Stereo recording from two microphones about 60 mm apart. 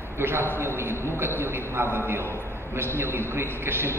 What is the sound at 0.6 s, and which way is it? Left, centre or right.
A man's voice, right.